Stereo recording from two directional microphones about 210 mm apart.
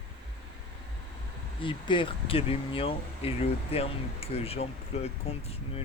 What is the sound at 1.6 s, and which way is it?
Speech, 25° left (ahead or behind).